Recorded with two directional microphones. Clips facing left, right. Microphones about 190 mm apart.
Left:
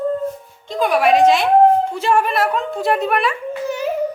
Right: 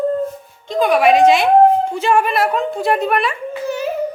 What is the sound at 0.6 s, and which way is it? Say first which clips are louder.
A woman's voice: right 3 dB; 5° left (ahead or behind).